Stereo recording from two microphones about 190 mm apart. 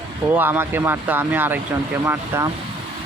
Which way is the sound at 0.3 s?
10° right (ahead or behind).